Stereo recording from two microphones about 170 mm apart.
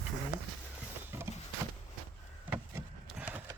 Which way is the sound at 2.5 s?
10° right (ahead or behind).